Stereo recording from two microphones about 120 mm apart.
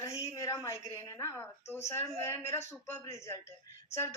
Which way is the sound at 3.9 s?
25° left (ahead or behind).